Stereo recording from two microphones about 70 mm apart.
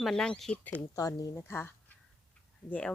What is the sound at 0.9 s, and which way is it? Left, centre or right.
Speech, left.